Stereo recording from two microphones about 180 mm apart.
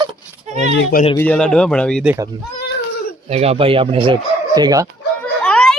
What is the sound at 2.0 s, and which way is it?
Speech, 15° right (ahead or behind).